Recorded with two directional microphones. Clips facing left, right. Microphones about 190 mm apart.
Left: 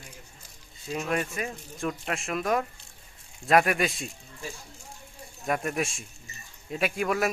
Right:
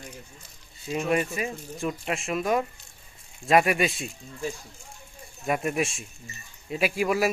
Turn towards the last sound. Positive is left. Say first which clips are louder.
# right 2 dB
turn(degrees=-5)  # may be behind; listen again after turning